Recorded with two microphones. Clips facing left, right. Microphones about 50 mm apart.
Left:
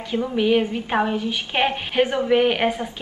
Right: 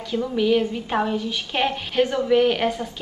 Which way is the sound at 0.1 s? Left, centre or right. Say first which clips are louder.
Left 1 dB; left.